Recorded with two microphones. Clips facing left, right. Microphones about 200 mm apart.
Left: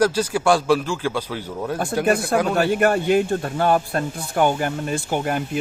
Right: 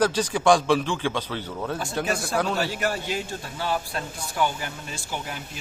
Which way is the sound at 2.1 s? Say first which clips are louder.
Left 7 dB; 55° left (ahead or behind).